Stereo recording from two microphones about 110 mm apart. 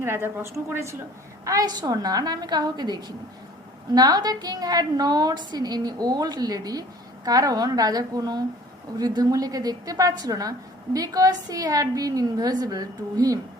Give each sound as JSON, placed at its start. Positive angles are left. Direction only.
{"t": 0.0, "sound": "a woman's voice", "side_deg": -20}
{"t": 1.5, "sound": "a woman's voice", "side_deg": -35}